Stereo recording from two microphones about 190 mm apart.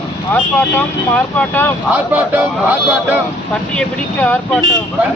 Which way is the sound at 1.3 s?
10° left (ahead or behind).